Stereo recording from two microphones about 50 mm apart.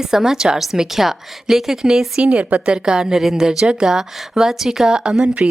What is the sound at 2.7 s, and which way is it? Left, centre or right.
Speech, centre.